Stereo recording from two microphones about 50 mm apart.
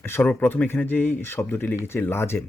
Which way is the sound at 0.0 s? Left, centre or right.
Left.